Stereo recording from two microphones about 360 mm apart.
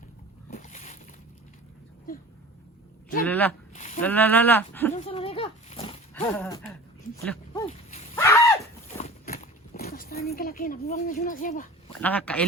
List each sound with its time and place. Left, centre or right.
0.5 s boat: centre
3.2 s speech: centre
3.8 s a sound: centre
4.0 s speech: centre
4.9 s a sound: centre
6.3 s speech: centre
8.1 s a sound: centre
9.0 s horse: centre
11.9 s speech: centre